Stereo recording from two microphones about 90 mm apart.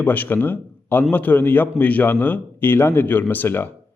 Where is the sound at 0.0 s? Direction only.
20° left (ahead or behind).